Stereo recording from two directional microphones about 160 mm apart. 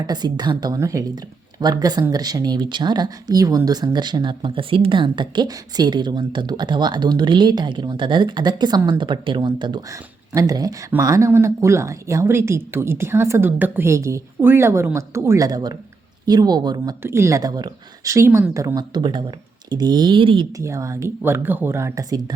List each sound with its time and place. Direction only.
0.0 s speech: 25° right (ahead or behind)
20.6 s speech: 20° right (ahead or behind)